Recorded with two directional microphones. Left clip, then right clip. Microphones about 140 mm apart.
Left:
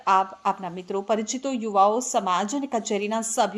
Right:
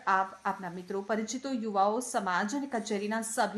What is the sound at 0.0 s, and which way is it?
A woman's voice, 20° left (ahead or behind).